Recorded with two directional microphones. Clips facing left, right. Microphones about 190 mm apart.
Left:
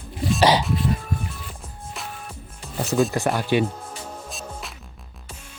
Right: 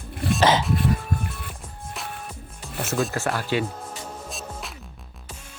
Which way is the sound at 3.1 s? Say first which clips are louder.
Left 4 dB; 15° left (ahead or behind).